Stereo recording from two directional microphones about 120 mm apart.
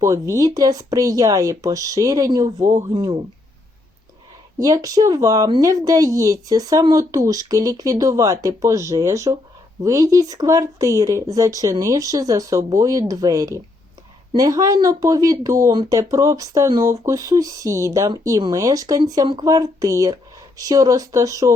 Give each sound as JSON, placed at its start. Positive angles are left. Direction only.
{"t": 0.0, "sound": "speech", "side_deg": -25}
{"t": 2.9, "sound": "speech", "side_deg": -40}
{"t": 4.5, "sound": "speech", "side_deg": -30}